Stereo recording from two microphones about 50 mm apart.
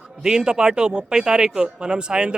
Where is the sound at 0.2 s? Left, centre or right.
Centre.